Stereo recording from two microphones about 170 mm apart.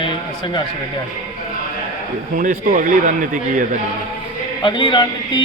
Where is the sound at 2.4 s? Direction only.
55° right (ahead or behind).